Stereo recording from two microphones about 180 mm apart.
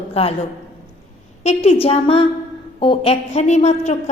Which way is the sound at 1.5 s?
35° left (ahead or behind).